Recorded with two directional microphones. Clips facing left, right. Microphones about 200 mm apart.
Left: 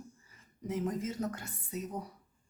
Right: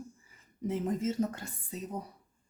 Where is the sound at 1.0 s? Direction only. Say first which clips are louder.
Right 4 dB; 25° right (ahead or behind).